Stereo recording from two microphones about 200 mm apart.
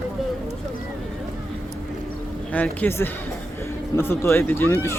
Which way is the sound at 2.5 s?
5° left (ahead or behind).